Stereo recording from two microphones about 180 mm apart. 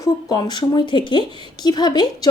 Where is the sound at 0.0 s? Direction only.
20° left (ahead or behind).